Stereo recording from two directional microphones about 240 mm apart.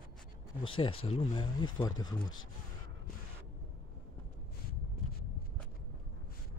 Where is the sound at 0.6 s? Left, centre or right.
Left.